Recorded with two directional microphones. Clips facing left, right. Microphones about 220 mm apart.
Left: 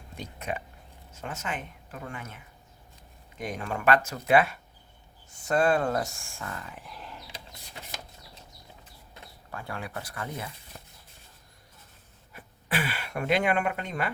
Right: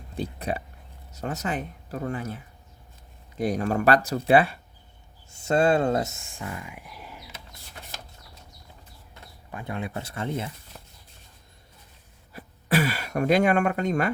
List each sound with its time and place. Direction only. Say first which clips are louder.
0.2 s speech: right 6 dB; 35° right (ahead or behind); by 7.3 s 10° right (ahead or behind)
9.5 s speech: right 5 dB; 20° right (ahead or behind)
12.3 s a sound: right 8 dB; 40° right (ahead or behind)